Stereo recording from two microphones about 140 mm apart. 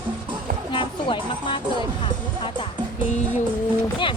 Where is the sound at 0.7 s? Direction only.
35° left (ahead or behind).